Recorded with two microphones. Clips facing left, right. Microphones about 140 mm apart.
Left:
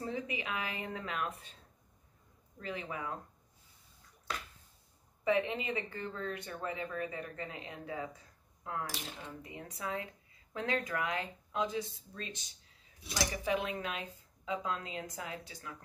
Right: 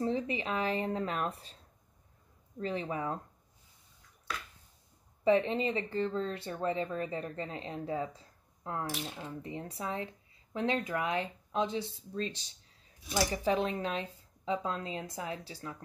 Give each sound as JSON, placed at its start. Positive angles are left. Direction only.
{"t": 0.0, "sound": "speech", "side_deg": -35}
{"t": 2.6, "sound": "speech", "side_deg": -35}
{"t": 5.2, "sound": "speech", "side_deg": -30}